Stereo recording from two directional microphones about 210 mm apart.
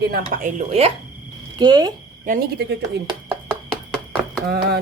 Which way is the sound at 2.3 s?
45° right (ahead or behind).